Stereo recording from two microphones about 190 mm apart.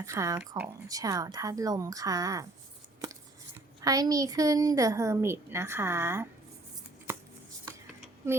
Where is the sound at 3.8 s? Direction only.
20° right (ahead or behind).